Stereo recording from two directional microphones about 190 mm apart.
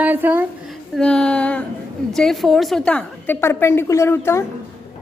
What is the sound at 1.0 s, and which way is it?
A woman's voice, 5° left (ahead or behind).